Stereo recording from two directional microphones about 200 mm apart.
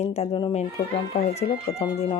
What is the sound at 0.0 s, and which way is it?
Speech, 30° left (ahead or behind).